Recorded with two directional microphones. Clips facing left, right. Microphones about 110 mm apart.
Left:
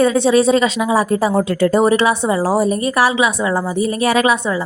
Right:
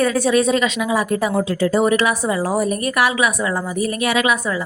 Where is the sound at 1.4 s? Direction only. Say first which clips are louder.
Left 3 dB; 60° left (ahead or behind).